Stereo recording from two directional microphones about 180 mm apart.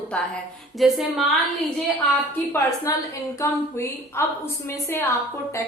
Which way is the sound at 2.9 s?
20° left (ahead or behind).